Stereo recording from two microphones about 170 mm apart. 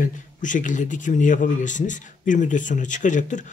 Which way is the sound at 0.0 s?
50° left (ahead or behind).